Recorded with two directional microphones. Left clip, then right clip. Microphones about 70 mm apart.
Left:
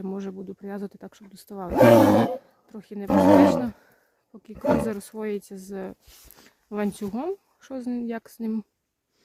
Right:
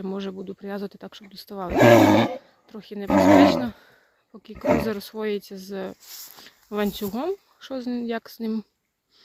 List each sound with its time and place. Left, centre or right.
0.0 s speech: left
1.7 s speech: left
2.4 s speech: left